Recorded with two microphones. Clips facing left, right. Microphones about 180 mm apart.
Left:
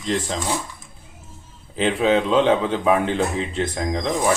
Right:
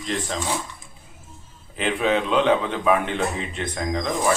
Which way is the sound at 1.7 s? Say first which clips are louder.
Left 3 dB; 30° left (ahead or behind).